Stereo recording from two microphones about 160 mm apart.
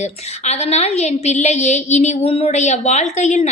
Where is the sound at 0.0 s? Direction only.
45° left (ahead or behind).